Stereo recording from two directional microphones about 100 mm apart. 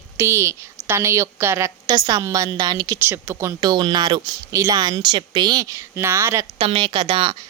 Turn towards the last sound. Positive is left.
turn(degrees=-55)  # may be behind; listen again after turning